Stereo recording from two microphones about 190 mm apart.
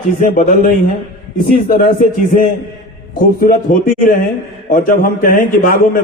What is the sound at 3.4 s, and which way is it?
A man's voice, 45° left (ahead or behind).